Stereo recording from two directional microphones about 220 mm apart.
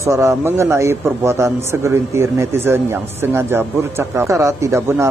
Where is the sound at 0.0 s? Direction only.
15° right (ahead or behind).